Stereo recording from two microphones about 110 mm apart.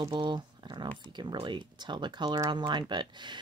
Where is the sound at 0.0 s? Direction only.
45° right (ahead or behind).